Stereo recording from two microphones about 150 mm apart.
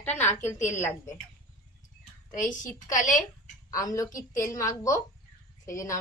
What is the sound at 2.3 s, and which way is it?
A woman's voice, 60° left (ahead or behind).